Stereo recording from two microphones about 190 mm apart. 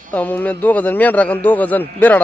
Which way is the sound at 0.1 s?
10° left (ahead or behind).